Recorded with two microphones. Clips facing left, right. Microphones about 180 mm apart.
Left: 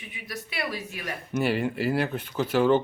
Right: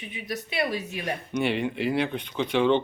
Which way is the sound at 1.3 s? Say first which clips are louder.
Left 2 dB; 5° left (ahead or behind).